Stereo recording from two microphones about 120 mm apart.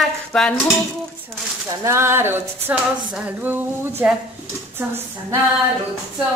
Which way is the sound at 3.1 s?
15° right (ahead or behind).